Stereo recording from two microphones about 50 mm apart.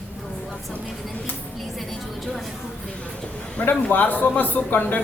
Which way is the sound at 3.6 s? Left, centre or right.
Left.